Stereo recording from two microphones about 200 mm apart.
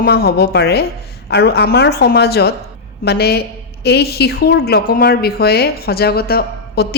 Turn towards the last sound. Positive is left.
turn(degrees=50)  # may be behind; listen again after turning